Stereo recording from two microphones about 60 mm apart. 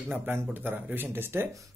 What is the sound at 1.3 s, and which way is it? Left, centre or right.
Speech, right.